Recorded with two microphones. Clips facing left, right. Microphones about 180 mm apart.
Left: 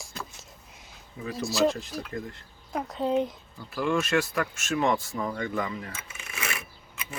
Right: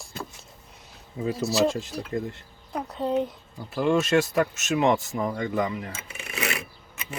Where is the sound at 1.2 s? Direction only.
30° right (ahead or behind).